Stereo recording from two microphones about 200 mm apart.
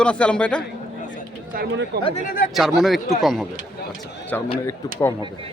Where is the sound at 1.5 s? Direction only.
55° right (ahead or behind).